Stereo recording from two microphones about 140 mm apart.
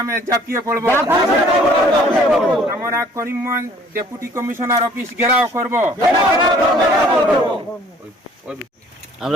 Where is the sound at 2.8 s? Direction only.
20° right (ahead or behind).